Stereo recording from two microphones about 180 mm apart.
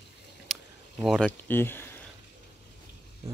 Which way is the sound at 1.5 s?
10° left (ahead or behind).